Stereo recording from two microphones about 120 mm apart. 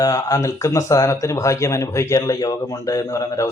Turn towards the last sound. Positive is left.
turn(degrees=25)  # may be behind; listen again after turning